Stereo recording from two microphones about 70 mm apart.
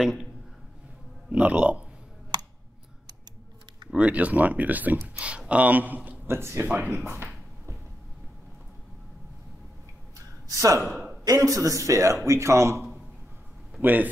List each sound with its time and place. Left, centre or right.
0.0 s a man's voice: centre
1.3 s speech: centre
2.3 s clicking: right
3.9 s a man's voice: centre
6.3 s speech: right
10.1 s a sound: right
11.2 s speech: right
13.7 s a man's voice: right